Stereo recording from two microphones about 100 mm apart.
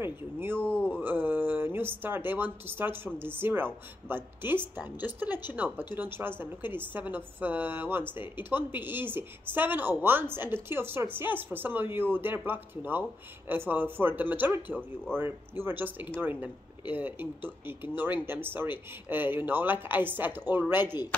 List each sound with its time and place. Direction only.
0.0 s a woman's voice: 20° right (ahead or behind)
0.7 s a sound: 15° left (ahead or behind)
0.9 s a woman's voice: 20° right (ahead or behind)